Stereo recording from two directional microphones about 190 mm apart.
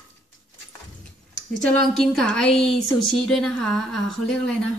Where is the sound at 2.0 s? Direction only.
Centre (ahead or behind).